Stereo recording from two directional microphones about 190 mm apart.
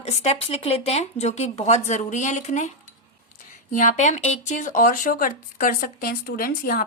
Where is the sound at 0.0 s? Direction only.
35° left (ahead or behind).